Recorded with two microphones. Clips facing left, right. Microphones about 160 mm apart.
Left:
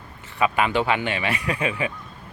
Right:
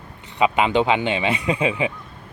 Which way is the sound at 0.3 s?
20° right (ahead or behind).